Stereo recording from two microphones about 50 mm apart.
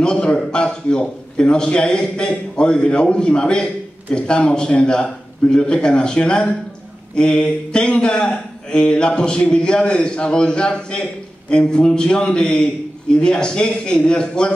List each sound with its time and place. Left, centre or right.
0.0 s a man's voice: centre